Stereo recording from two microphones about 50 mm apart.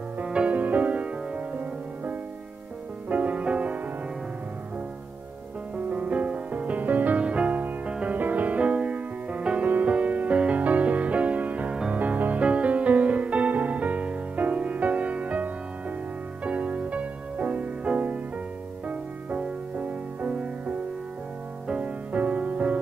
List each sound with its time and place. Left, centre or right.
0.2 s music: right
3.1 s music: right
5.9 s music: right
7.2 s music: right